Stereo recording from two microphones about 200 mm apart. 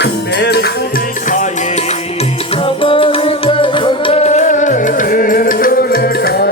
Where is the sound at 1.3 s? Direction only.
35° left (ahead or behind).